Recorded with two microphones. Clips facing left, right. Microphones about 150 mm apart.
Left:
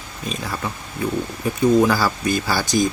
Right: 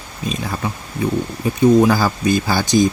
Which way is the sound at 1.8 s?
20° right (ahead or behind).